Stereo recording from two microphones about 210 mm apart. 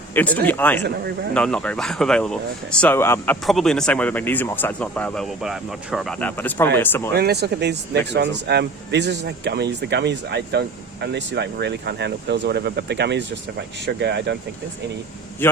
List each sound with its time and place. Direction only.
0.1 s speech: 10° left (ahead or behind)
0.8 s speech: 50° right (ahead or behind)
1.3 s speech: 5° left (ahead or behind)
7.1 s speech: 50° right (ahead or behind)
15.4 s speech: 10° left (ahead or behind)